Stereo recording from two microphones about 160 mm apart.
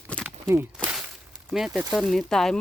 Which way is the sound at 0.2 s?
15° right (ahead or behind).